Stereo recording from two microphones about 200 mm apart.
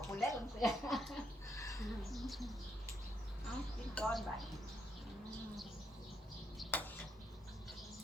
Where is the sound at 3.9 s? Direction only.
5° left (ahead or behind).